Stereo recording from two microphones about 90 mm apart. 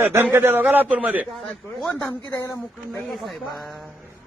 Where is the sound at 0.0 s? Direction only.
25° right (ahead or behind).